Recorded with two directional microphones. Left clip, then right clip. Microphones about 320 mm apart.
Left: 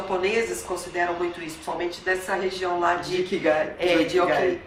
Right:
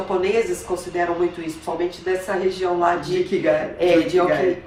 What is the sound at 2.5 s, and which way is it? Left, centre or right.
Speech, centre.